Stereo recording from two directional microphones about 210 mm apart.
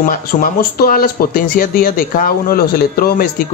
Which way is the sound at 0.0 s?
40° left (ahead or behind).